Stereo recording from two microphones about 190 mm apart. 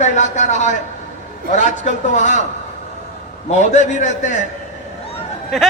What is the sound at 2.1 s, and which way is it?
Speech, 40° left (ahead or behind).